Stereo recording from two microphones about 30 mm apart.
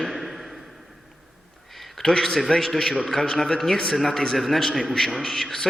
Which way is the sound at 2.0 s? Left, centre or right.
Centre.